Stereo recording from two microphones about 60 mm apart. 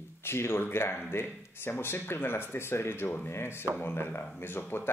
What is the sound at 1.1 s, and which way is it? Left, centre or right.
Speech, left.